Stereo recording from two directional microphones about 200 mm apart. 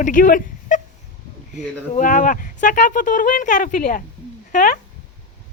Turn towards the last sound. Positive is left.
turn(degrees=40)  # may be behind; listen again after turning